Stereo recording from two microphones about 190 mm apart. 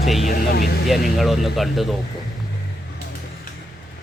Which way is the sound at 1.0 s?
Centre (ahead or behind).